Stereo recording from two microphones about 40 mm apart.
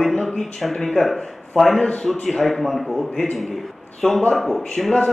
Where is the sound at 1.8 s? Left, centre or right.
Left.